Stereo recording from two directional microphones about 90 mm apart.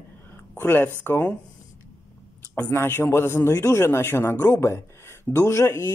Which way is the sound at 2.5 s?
25° left (ahead or behind).